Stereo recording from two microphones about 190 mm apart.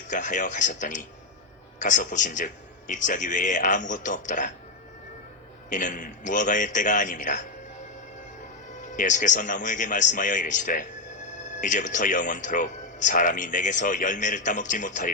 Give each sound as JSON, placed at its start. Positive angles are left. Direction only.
{"t": 0.1, "sound": "speech", "side_deg": 40}
{"t": 5.7, "sound": "speech", "side_deg": 40}
{"t": 8.9, "sound": "speech", "side_deg": 40}